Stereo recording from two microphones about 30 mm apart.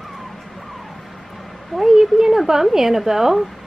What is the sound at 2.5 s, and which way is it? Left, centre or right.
Speech, centre.